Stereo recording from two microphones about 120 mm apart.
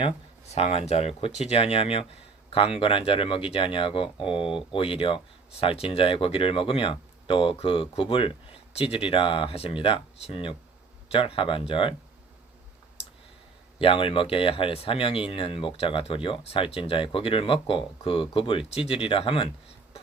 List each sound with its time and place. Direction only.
0.4 s speech: 60° left (ahead or behind)
13.7 s speech: 45° left (ahead or behind)